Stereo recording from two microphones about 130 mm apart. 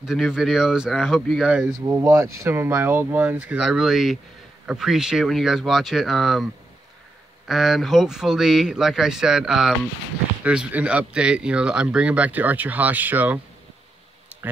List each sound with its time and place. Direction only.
0.0 s speech: 5° right (ahead or behind)
1.9 s speech: 20° right (ahead or behind)
14.3 s a sound: 10° right (ahead or behind)